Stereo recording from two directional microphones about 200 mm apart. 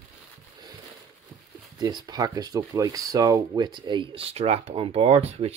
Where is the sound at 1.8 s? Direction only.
20° right (ahead or behind).